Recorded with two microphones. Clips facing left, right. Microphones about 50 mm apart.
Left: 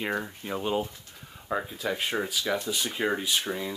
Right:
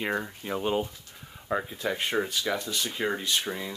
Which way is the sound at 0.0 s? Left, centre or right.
Centre.